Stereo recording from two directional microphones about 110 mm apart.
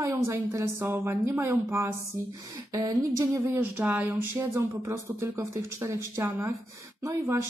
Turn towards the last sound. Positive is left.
turn(degrees=-30)  # may be behind; listen again after turning